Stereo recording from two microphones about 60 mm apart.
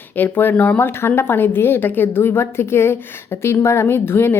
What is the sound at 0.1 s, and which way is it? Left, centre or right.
A woman's voice, left.